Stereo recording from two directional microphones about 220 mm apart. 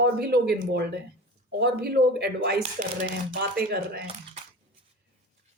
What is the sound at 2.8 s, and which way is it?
Speech, 30° right (ahead or behind).